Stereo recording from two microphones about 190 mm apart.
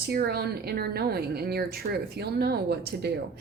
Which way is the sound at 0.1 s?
55° right (ahead or behind).